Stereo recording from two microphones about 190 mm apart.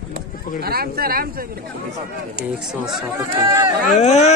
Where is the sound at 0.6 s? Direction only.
55° right (ahead or behind).